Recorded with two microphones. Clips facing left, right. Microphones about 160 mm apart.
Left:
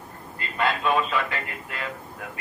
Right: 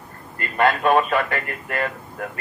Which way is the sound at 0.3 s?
55° right (ahead or behind).